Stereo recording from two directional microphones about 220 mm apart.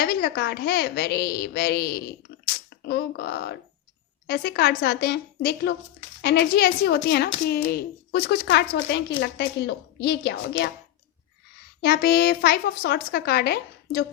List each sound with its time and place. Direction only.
0.0 s a woman's voice: 45° left (ahead or behind)
11.8 s a woman's voice: 45° left (ahead or behind)